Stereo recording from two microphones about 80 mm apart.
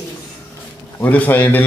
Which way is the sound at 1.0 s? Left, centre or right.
Left.